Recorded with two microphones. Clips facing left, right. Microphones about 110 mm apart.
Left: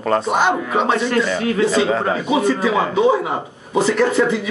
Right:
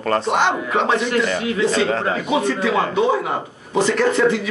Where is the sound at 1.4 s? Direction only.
35° left (ahead or behind).